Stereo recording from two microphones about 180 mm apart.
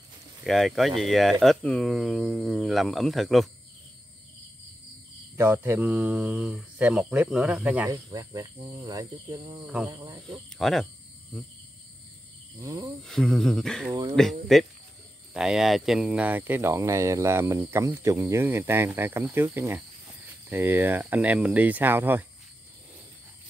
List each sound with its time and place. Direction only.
0.4 s speech: centre (ahead or behind)
5.3 s speech: 10° right (ahead or behind)
7.9 s speech: 20° right (ahead or behind)
10.3 s speech: centre (ahead or behind)
12.5 s speech: 20° right (ahead or behind)
13.0 s speech: centre (ahead or behind)
15.3 s speech: 5° right (ahead or behind)